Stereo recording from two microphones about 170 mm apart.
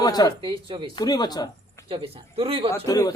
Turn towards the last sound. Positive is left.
turn(degrees=20)  # may be behind; listen again after turning